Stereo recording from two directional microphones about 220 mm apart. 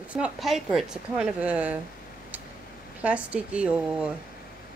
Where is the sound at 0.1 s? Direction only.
5° right (ahead or behind).